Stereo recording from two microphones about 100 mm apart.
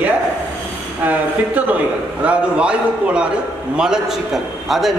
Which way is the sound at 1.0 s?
15° right (ahead or behind).